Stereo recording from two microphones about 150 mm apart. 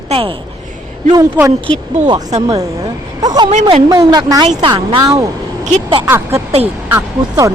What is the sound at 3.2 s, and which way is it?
Speech, 25° right (ahead or behind).